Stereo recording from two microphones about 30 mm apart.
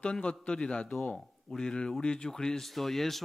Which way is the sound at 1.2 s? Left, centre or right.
Centre.